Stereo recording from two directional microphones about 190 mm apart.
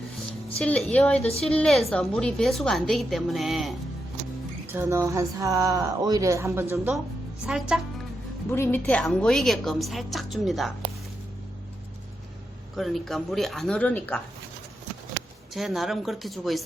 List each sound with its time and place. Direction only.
0.6 s a woman's voice: 5° left (ahead or behind)
4.7 s a woman's voice: 10° right (ahead or behind)
8.4 s a woman's voice: 10° left (ahead or behind)
12.7 s a woman's voice: centre (ahead or behind)
15.5 s a woman's voice: centre (ahead or behind)